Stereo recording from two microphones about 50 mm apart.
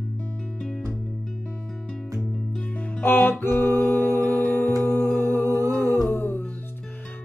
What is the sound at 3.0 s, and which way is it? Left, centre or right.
Music, left.